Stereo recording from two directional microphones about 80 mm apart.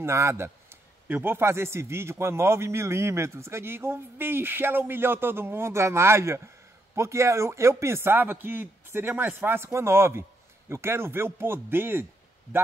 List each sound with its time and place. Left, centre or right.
0.0 s speech: right